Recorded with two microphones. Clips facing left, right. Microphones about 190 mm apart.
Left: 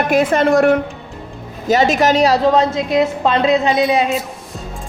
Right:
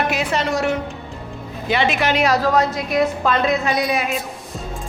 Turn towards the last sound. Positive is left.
turn(degrees=25)  # may be behind; listen again after turning